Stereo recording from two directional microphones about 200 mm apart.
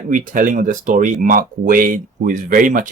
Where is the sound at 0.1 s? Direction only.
40° right (ahead or behind).